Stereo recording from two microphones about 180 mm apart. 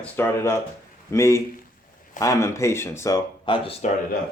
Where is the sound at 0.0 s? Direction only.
15° left (ahead or behind).